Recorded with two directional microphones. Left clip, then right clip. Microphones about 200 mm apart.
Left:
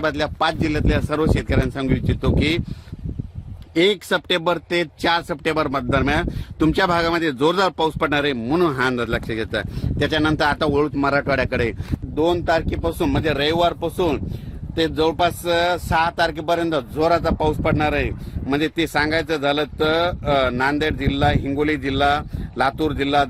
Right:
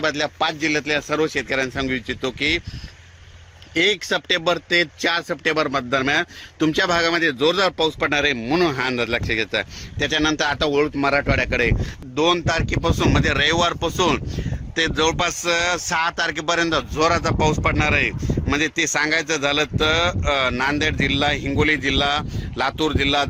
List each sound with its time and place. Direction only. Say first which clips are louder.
0.0 s speech: left 1 dB; 55° left (ahead or behind)
3.8 s speech: left 1 dB; 60° left (ahead or behind)
12.1 s speech: even; 35° left (ahead or behind)